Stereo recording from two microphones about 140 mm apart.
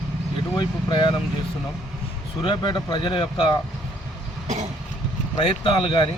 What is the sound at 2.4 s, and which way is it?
A man's voice, 35° left (ahead or behind).